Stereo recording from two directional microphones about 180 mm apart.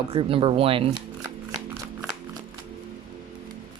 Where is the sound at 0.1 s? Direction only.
30° right (ahead or behind).